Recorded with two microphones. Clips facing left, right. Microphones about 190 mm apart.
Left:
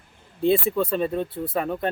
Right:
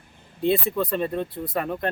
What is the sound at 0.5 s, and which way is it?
Speech, 5° left (ahead or behind).